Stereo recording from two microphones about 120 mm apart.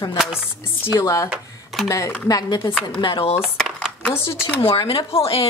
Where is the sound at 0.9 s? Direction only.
30° left (ahead or behind).